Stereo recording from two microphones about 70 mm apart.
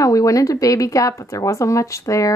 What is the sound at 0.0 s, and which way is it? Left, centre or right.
Speech, left.